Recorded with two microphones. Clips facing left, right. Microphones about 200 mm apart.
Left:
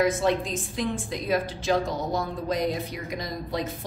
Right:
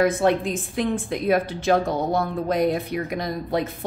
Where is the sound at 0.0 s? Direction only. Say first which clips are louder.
Right 4 dB; 60° right (ahead or behind).